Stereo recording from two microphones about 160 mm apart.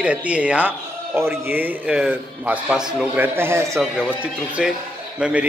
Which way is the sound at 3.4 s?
15° right (ahead or behind).